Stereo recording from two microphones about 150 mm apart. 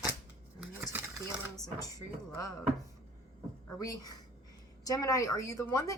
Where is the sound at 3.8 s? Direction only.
25° left (ahead or behind).